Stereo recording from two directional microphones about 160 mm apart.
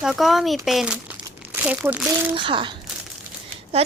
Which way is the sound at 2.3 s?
30° right (ahead or behind).